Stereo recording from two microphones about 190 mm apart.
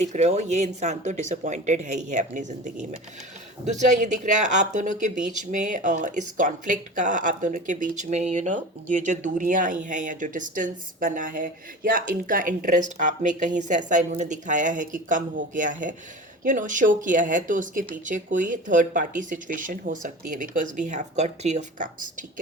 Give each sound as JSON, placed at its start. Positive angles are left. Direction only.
{"t": 0.0, "sound": "speech", "side_deg": -35}